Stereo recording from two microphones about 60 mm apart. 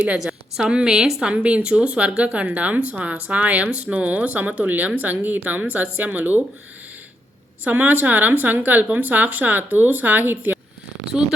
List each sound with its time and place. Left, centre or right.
0.0 s a woman's voice: centre
1.3 s speech: right
7.6 s speech: right
11.1 s speech: centre